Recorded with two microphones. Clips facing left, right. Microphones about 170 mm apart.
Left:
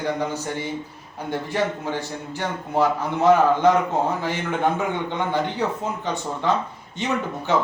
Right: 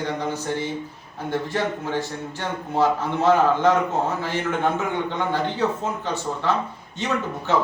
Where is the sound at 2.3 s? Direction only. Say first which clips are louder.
Left 1 dB; 15° left (ahead or behind).